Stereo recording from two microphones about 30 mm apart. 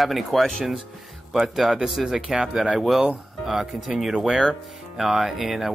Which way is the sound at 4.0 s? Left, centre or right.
Centre.